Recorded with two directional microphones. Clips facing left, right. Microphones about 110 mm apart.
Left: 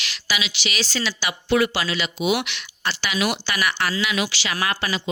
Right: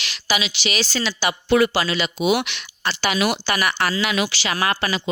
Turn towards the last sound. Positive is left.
turn(degrees=-40)  # may be behind; listen again after turning